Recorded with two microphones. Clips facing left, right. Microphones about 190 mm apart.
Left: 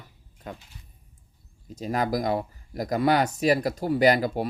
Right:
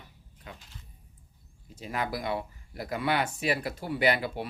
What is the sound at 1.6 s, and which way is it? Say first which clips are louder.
Speech: left 7 dB; 40° left (ahead or behind).